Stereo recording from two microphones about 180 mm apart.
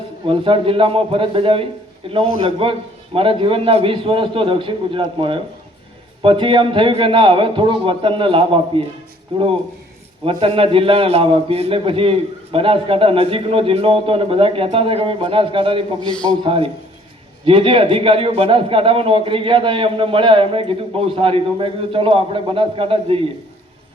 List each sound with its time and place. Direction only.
0.3 s a man's voice: 30° right (ahead or behind)